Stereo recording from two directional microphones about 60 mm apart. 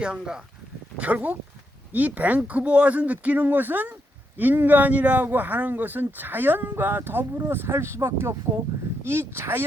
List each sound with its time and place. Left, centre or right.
0.0 s speech: centre
0.9 s speech: right